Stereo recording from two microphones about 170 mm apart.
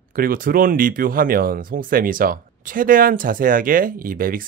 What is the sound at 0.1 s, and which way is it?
Speech, 55° right (ahead or behind).